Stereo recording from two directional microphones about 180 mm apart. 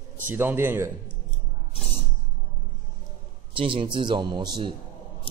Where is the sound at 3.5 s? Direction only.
30° right (ahead or behind).